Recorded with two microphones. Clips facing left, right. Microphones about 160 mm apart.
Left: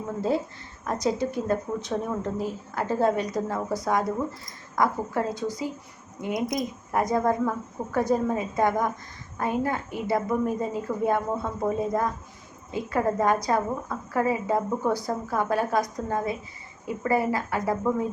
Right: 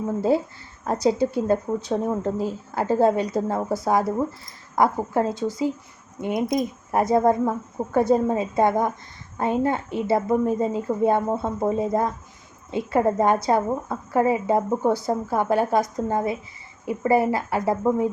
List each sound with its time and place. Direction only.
0.9 s a woman's voice: 30° right (ahead or behind)